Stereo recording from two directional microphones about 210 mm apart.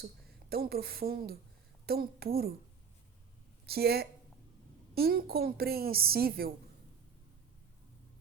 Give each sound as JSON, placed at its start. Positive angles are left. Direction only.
{"t": 0.5, "sound": "a woman's voice", "side_deg": -45}
{"t": 3.7, "sound": "a woman's voice", "side_deg": -50}